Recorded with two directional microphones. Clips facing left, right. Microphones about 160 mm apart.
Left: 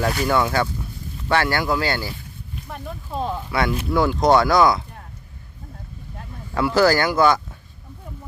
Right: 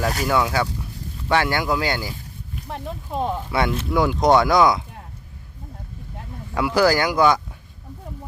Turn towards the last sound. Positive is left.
turn(degrees=-15)  # may be behind; listen again after turning